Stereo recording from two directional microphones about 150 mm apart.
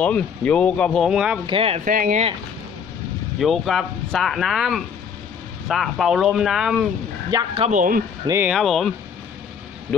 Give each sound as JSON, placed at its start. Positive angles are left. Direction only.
{"t": 0.0, "sound": "speech", "side_deg": 10}
{"t": 1.4, "sound": "speech", "side_deg": -35}
{"t": 1.9, "sound": "speech", "side_deg": -65}
{"t": 3.3, "sound": "speech", "side_deg": 0}
{"t": 7.3, "sound": "speech", "side_deg": -25}
{"t": 7.7, "sound": "speech", "side_deg": -65}
{"t": 8.5, "sound": "speech", "side_deg": 0}